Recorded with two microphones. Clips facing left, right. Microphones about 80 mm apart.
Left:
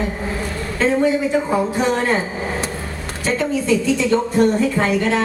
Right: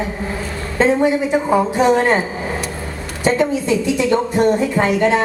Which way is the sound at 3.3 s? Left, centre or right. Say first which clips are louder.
Right 2 dB; right.